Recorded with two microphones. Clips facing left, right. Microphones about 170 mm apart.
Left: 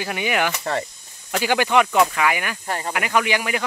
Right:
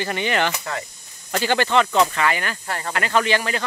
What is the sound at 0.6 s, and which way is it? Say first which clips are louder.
Speech: left 5 dB; 35° left (ahead or behind).